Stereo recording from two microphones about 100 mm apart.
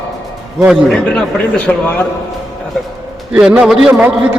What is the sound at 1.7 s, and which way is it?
Speech, 10° left (ahead or behind).